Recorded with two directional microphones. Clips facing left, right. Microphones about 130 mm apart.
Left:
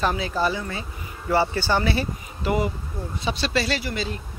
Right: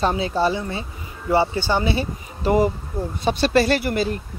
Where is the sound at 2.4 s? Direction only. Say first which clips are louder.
Right 6 dB; 35° right (ahead or behind).